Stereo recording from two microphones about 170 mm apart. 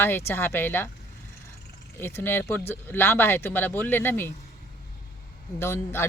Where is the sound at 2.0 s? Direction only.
15° left (ahead or behind).